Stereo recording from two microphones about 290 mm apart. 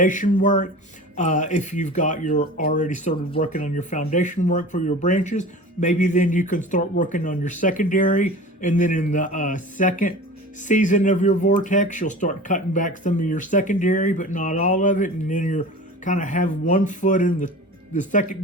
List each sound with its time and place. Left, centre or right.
0.0 s speech: left